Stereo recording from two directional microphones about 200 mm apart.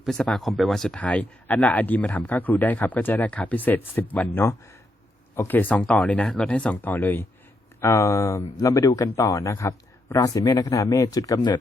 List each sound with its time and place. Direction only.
0.0 s speech: centre (ahead or behind); by 11.6 s 20° left (ahead or behind)